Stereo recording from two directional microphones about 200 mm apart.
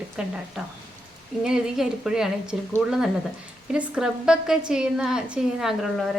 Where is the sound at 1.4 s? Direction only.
5° right (ahead or behind).